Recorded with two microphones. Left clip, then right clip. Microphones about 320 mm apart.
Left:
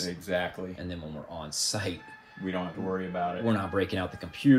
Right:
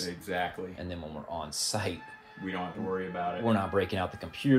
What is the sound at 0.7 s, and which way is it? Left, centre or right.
Speech, right.